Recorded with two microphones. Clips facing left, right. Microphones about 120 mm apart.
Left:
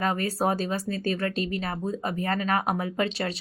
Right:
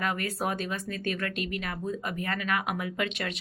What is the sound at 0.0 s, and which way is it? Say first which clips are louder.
A woman's voice: left 5 dB; 35° left (ahead or behind).